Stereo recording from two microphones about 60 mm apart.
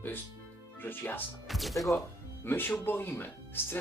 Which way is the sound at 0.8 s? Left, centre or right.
Left.